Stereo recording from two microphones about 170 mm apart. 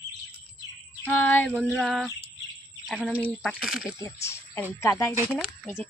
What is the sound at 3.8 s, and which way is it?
Speech, 15° left (ahead or behind).